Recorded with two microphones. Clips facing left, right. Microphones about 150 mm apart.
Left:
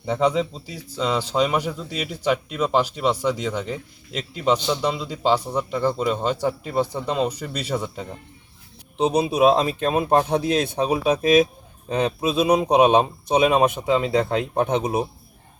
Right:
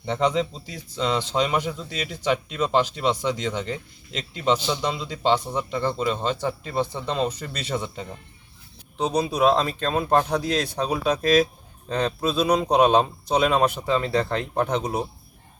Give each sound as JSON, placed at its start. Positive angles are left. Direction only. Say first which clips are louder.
{"t": 0.0, "sound": "a man's voice", "louder": "left 2 dB", "side_deg": 5}
{"t": 9.0, "sound": "a man's voice", "louder": "left 4 dB", "side_deg": 25}